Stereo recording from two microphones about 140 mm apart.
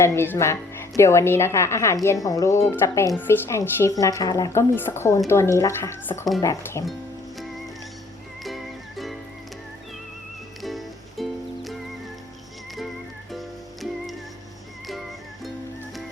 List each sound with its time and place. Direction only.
0.0 s a woman's voice: 20° left (ahead or behind)
8.4 s music: centre (ahead or behind)
10.6 s music: centre (ahead or behind)